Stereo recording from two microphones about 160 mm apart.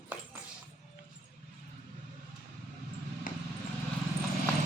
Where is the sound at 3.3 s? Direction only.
55° left (ahead or behind).